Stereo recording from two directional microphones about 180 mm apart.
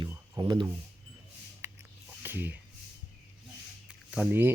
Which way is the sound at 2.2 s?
10° right (ahead or behind).